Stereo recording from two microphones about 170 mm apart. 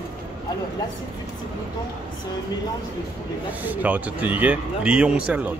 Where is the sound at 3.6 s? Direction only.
10° right (ahead or behind).